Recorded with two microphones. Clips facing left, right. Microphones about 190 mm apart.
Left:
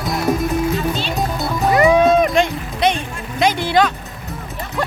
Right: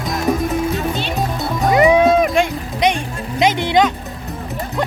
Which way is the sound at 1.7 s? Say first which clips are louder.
Right 1 dB; 15° right (ahead or behind).